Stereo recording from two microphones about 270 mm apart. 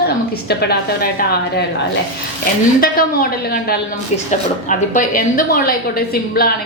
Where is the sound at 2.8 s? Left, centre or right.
Left.